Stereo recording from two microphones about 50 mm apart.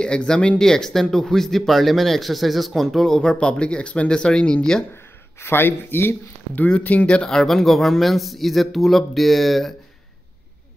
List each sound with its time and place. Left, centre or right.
0.0 s speech: centre
3.2 s speech: centre
5.4 s speech: left
6.5 s speech: left
7.2 s speech: centre